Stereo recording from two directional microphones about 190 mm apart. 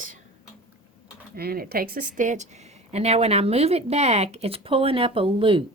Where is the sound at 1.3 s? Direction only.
50° right (ahead or behind).